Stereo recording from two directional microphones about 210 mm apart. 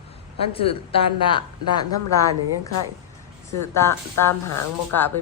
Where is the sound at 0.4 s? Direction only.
25° left (ahead or behind).